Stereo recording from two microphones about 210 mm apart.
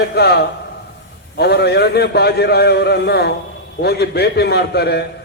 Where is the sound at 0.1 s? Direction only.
50° left (ahead or behind).